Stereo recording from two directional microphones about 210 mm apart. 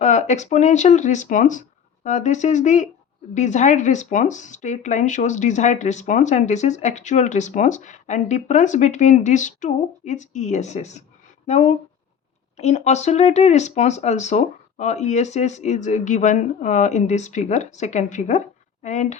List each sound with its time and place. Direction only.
0.0 s speech: 35° left (ahead or behind)